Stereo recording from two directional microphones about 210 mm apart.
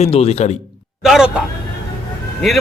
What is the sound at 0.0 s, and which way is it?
Speech, 30° left (ahead or behind).